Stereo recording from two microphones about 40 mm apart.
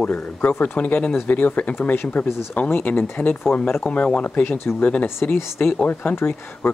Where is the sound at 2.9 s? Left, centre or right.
Left.